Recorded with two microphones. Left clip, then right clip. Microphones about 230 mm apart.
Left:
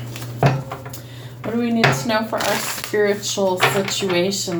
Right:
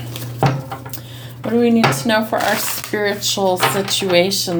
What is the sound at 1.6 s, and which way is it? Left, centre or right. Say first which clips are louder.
Speech: right 3 dB; right.